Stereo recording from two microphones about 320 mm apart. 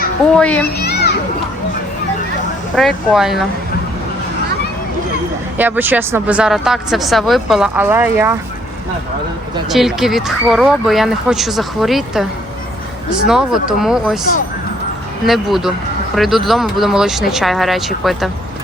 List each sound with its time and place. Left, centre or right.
0.3 s speech: centre
2.7 s speech: centre
5.5 s speech: centre
9.6 s speech: centre
13.2 s speech: centre
15.3 s speech: centre